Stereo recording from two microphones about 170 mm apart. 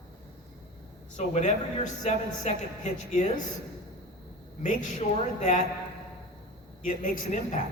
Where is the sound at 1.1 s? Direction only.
40° left (ahead or behind).